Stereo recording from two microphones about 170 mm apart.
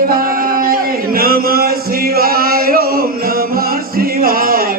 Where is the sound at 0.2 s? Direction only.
55° right (ahead or behind).